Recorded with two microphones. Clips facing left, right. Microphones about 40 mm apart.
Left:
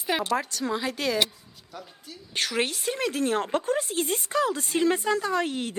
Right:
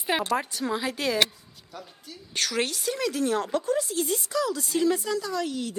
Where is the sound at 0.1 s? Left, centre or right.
Centre.